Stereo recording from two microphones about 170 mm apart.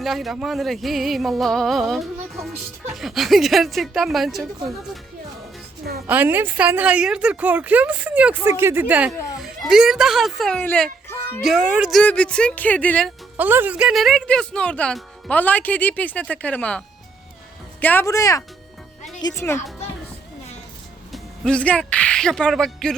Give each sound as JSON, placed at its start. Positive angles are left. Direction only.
{"t": 0.0, "sound": "speech", "side_deg": 0}
{"t": 6.1, "sound": "a woman's voice", "side_deg": -10}
{"t": 11.1, "sound": "music", "side_deg": 15}
{"t": 11.4, "sound": "speech", "side_deg": -5}
{"t": 13.3, "sound": "speech", "side_deg": -10}
{"t": 21.1, "sound": "speech", "side_deg": 5}